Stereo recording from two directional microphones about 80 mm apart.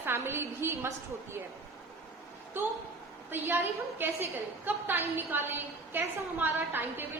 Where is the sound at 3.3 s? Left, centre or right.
Right.